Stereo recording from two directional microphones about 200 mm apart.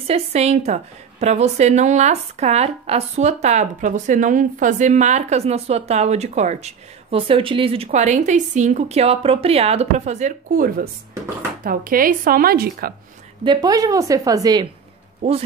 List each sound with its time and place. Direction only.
0.0 s speech: 30° right (ahead or behind); by 12.9 s 50° right (ahead or behind)
13.4 s a woman's voice: 20° right (ahead or behind)